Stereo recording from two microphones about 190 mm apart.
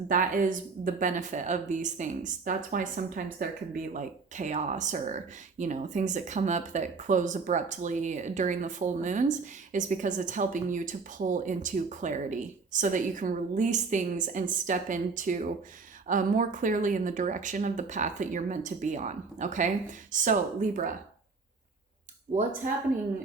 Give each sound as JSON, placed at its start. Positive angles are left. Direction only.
{"t": 0.1, "sound": "speech", "side_deg": -45}
{"t": 22.3, "sound": "speech", "side_deg": -35}